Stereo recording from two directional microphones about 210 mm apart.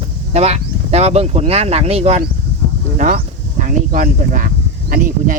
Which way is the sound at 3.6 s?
40° right (ahead or behind).